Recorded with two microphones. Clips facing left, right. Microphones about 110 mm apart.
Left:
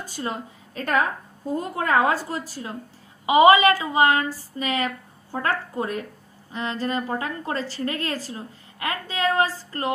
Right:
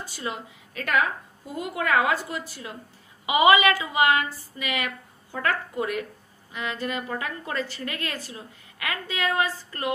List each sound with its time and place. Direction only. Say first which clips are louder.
0.0 s a woman's voice: left 3 dB; 40° left (ahead or behind)